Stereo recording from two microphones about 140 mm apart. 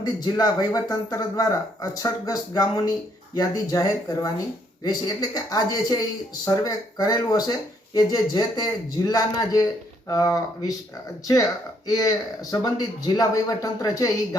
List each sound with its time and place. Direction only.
0.0 s speech: 30° left (ahead or behind)
11.9 s speech: 25° left (ahead or behind)